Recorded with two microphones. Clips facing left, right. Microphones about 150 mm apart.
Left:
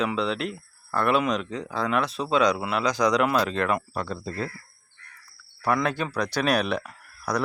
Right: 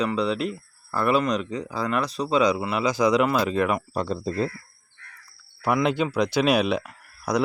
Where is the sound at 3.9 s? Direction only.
20° right (ahead or behind).